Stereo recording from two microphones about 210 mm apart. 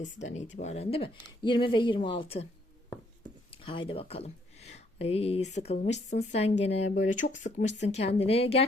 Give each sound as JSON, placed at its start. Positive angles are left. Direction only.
{"t": 0.0, "sound": "speech", "side_deg": 35}
{"t": 3.5, "sound": "speech", "side_deg": 25}